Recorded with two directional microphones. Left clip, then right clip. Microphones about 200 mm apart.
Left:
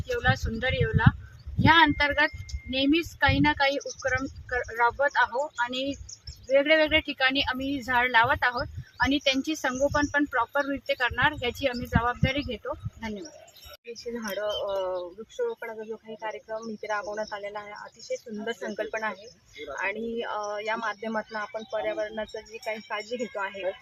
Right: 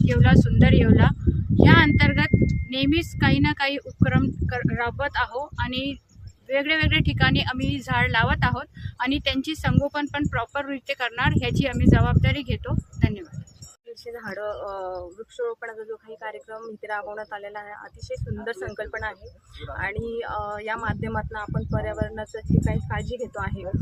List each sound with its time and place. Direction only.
0.2 s speech: 25° right (ahead or behind)